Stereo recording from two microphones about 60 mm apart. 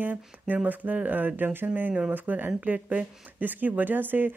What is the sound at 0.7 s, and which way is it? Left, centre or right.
Speech, right.